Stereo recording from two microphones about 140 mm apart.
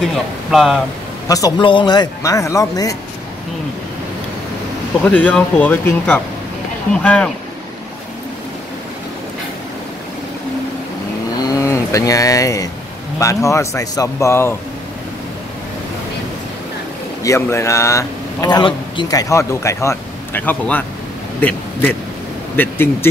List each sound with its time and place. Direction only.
0.0 s speech: centre (ahead or behind)
1.6 s a man's voice: 35° left (ahead or behind)
5.0 s speech: 10° left (ahead or behind)
11.4 s a sound: 20° left (ahead or behind)
13.2 s a man's voice: 20° left (ahead or behind)
17.2 s speech: 20° left (ahead or behind)
21.4 s a sound: 10° left (ahead or behind)
22.6 s speech: 15° left (ahead or behind)